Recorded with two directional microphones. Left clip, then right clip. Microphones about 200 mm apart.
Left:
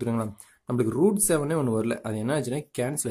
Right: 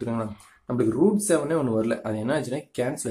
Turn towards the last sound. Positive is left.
turn(degrees=35)  # may be behind; listen again after turning